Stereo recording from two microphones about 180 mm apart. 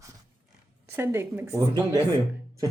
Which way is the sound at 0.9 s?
15° right (ahead or behind).